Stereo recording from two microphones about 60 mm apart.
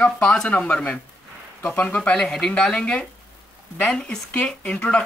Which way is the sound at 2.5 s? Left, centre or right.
Centre.